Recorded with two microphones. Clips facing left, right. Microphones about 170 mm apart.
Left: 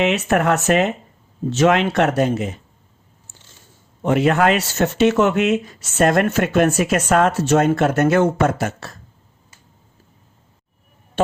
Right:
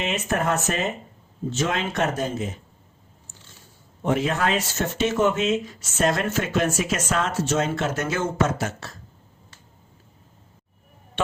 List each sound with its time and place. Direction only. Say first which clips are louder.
0.0 s speech: left 7 dB; 70° left (ahead or behind)
4.0 s speech: left 7 dB; 70° left (ahead or behind)